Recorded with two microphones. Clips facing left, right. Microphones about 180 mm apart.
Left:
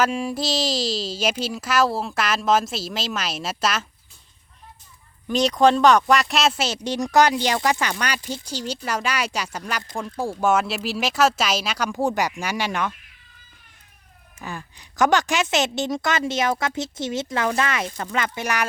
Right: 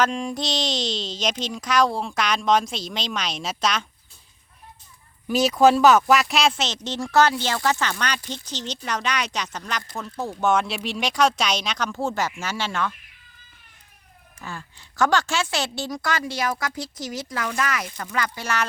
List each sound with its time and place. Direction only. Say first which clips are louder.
0.0 s speech: left 1 dB; 5° left (ahead or behind)
5.3 s speech: right 1 dB; 5° right (ahead or behind); by 12.9 s 15° left (ahead or behind)
14.3 s a woman's voice: left 2 dB; 15° left (ahead or behind)